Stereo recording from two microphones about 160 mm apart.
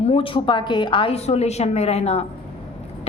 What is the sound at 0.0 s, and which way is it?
A woman's voice, 35° left (ahead or behind).